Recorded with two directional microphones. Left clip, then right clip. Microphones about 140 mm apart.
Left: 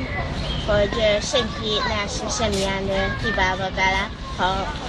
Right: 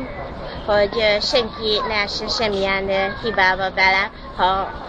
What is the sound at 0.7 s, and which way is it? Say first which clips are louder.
Speech: right 3 dB; 25° right (ahead or behind).